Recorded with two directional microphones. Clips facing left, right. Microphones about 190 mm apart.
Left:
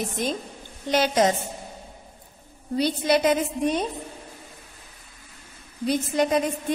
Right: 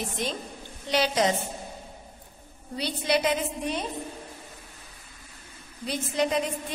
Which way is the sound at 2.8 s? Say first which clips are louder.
Left 5 dB; 45° left (ahead or behind).